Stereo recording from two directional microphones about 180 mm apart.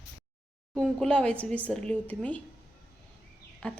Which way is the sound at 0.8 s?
5° left (ahead or behind).